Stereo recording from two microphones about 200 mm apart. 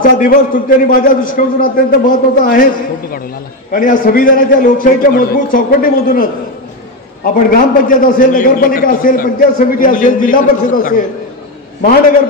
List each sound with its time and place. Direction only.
0.2 s a man's voice: 45° left (ahead or behind)
7.5 s a man's voice: 45° left (ahead or behind)